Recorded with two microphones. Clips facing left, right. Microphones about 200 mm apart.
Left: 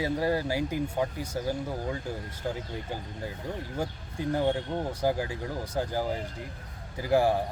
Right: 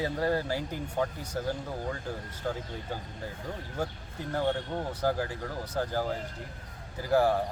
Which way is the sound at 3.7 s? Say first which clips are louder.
Left 2 dB; 10° left (ahead or behind).